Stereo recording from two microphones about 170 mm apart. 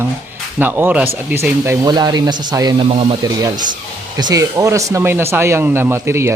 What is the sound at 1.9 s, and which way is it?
Speech, 25° right (ahead or behind).